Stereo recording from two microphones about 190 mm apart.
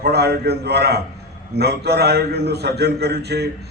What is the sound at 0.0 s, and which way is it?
A man's voice, 60° right (ahead or behind).